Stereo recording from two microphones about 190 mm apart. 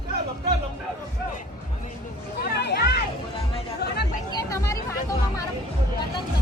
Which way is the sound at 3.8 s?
60° left (ahead or behind).